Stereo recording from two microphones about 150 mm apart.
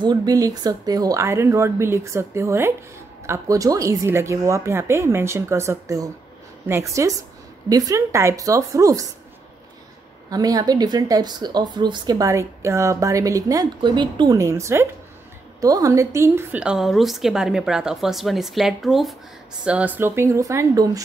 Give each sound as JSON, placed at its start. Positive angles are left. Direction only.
{"t": 0.0, "sound": "speech", "side_deg": -25}
{"t": 10.3, "sound": "speech", "side_deg": -25}
{"t": 16.6, "sound": "a woman's voice", "side_deg": 0}